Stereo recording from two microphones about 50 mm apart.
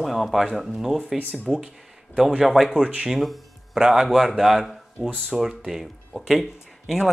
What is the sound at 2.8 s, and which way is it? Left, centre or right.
Speech, right.